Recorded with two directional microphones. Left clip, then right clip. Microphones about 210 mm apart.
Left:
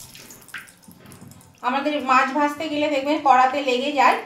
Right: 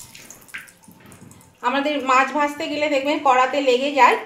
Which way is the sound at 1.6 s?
50° right (ahead or behind).